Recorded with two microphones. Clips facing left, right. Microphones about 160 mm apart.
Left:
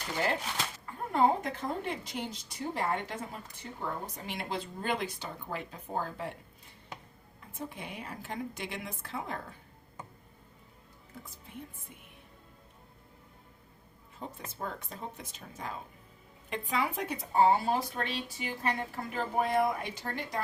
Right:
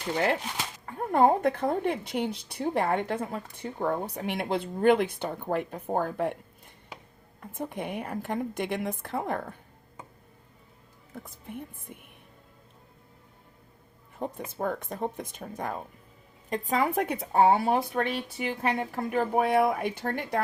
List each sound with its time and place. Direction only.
0.9 s speech: 55° right (ahead or behind)
7.5 s speech: 55° right (ahead or behind)
11.1 s speech: 55° right (ahead or behind)
14.6 s speech: 55° right (ahead or behind)
16.5 s speech: 45° right (ahead or behind)